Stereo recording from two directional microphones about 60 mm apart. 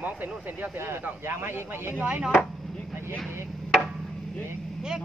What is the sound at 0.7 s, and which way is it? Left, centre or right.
Speech, right.